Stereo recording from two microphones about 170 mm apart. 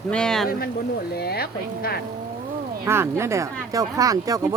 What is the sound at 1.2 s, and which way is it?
Speech, 65° left (ahead or behind).